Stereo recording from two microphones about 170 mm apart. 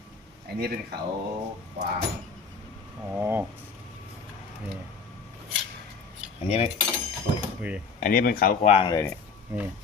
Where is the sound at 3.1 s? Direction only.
10° right (ahead or behind).